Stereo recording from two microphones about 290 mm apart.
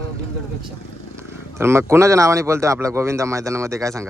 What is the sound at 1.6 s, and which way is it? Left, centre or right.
Speech, centre.